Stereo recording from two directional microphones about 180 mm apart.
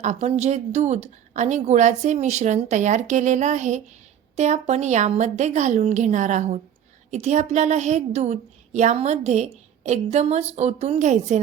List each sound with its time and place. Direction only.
0.0 s a woman's voice: 40° right (ahead or behind)